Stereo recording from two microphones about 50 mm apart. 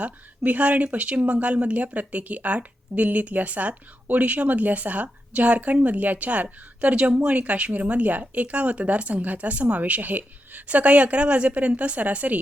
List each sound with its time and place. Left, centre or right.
0.0 s a woman's voice: right